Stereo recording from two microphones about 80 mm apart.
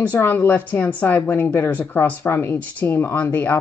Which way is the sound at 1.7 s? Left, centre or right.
Left.